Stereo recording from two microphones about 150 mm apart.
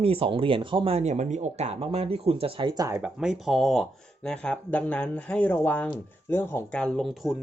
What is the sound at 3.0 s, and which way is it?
Speech, 5° right (ahead or behind).